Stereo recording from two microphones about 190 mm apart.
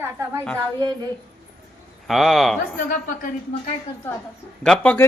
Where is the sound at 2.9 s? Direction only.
45° left (ahead or behind).